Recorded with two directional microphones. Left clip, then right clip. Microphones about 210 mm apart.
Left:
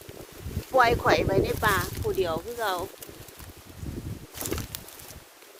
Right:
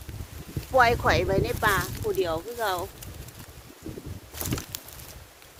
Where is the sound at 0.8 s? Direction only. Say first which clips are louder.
Even; centre (ahead or behind).